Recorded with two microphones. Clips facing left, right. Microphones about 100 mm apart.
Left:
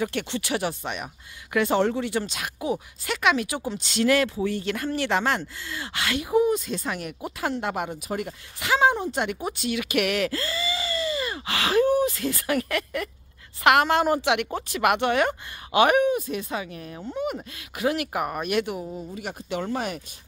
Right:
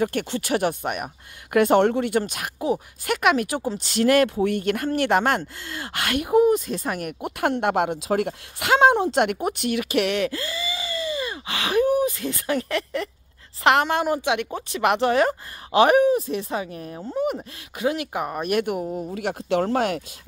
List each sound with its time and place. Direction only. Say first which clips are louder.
0.0 s speech: right 3 dB; 45° right (ahead or behind)
7.2 s speech: right 6 dB; 60° right (ahead or behind)
9.8 s speech: right 1 dB; 35° right (ahead or behind)
13.8 s a woman's voice: left 1 dB; 15° right (ahead or behind)
14.9 s speech: right 3 dB; 30° right (ahead or behind)
17.4 s speech: right 1 dB; 20° right (ahead or behind)
18.4 s speech: right 5 dB; 45° right (ahead or behind)
18.9 s speech: right 6 dB; 20° right (ahead or behind)
19.1 s speech: right 8 dB; 90° right